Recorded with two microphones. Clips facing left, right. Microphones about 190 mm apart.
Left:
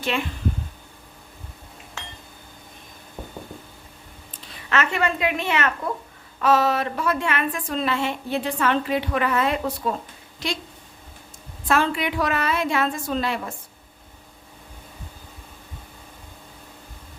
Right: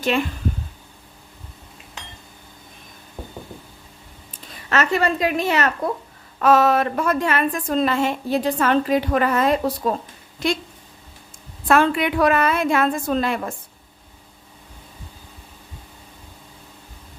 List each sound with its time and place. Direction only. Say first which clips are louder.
4.7 s a woman's voice: right 3 dB; 40° right (ahead or behind)
6.4 s a woman's voice: right 4 dB; 50° right (ahead or behind)
11.7 s a woman's voice: right 5 dB; 55° right (ahead or behind)